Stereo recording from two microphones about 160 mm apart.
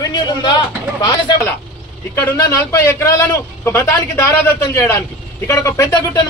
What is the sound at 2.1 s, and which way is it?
A man's voice, 15° left (ahead or behind).